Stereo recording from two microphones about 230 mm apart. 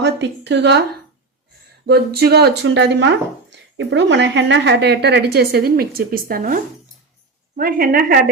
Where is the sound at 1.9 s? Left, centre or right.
Right.